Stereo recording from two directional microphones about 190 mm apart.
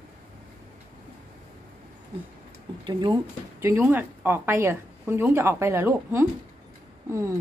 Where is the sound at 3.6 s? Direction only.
10° right (ahead or behind).